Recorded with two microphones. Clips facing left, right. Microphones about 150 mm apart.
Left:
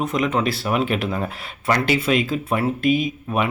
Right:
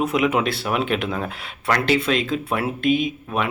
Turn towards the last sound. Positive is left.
turn(degrees=5)  # may be behind; listen again after turning